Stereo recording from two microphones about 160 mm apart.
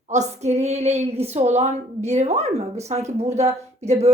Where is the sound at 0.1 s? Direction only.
45° right (ahead or behind).